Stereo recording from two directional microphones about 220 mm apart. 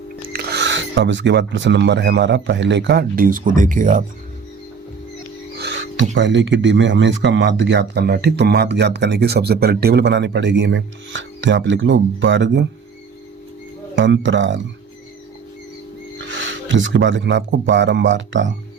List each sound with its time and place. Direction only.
0.3 s speech: 50° right (ahead or behind)
5.5 s music: 50° right (ahead or behind)
6.1 s speech: 55° right (ahead or behind)
13.9 s a man's voice: 55° right (ahead or behind)
16.3 s a man's voice: 60° right (ahead or behind)